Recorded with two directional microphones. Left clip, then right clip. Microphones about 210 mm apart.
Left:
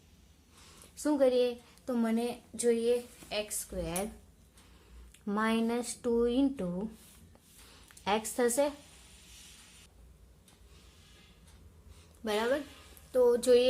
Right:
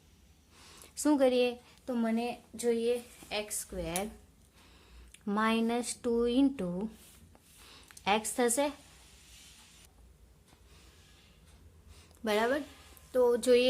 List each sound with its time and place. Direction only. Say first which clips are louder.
0.7 s a woman's voice: right 3 dB; 25° right (ahead or behind)
1.8 s a woman's voice: left 1 dB; 5° right (ahead or behind)
2.9 s speech: left 2 dB; 20° right (ahead or behind)
5.2 s speech: right 1 dB; 10° right (ahead or behind)
12.2 s a woman's voice: right 1 dB; 25° right (ahead or behind)